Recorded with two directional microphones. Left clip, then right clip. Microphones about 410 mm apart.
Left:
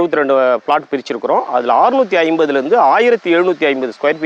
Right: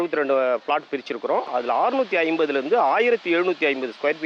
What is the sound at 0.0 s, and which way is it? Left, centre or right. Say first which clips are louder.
Speech: left 9 dB; left.